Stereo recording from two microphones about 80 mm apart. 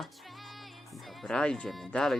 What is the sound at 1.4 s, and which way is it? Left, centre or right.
Speech, centre.